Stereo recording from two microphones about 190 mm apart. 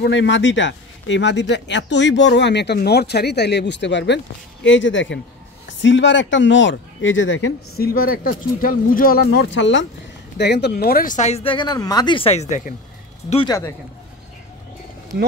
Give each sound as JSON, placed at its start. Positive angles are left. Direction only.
{"t": 0.0, "sound": "speech", "side_deg": 75}
{"t": 4.6, "sound": "speech", "side_deg": 75}
{"t": 7.7, "sound": "speech", "side_deg": 50}
{"t": 9.5, "sound": "speech", "side_deg": 75}
{"t": 10.3, "sound": "speech", "side_deg": 60}
{"t": 13.3, "sound": "speech", "side_deg": 30}